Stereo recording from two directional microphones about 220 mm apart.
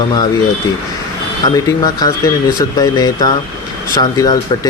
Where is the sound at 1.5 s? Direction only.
15° left (ahead or behind).